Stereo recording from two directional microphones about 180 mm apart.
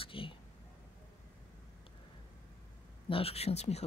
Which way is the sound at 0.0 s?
30° left (ahead or behind).